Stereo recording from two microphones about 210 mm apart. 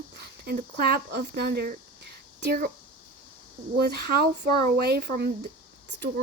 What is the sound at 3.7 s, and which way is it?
Speech, 50° right (ahead or behind).